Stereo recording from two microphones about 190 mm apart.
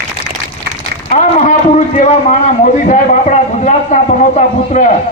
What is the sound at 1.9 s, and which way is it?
A man's voice, 40° left (ahead or behind).